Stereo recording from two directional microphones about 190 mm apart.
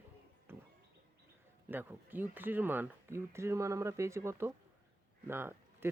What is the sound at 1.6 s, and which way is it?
Speech, 10° right (ahead or behind).